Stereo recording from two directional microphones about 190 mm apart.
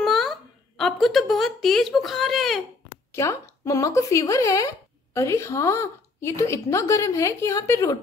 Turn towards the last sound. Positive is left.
turn(degrees=15)  # may be behind; listen again after turning